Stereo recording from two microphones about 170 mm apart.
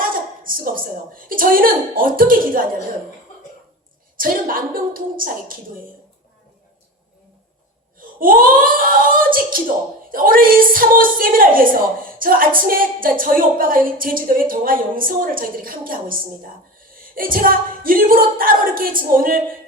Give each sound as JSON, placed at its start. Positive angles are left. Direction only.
{"t": 0.4, "sound": "speech", "side_deg": -55}
{"t": 4.2, "sound": "a woman's voice", "side_deg": -55}
{"t": 7.9, "sound": "a woman's voice", "side_deg": -55}